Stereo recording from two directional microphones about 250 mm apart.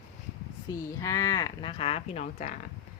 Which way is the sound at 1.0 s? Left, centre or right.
Centre.